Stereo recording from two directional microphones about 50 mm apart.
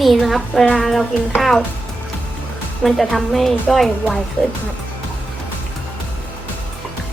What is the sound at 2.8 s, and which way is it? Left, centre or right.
A woman's voice, centre.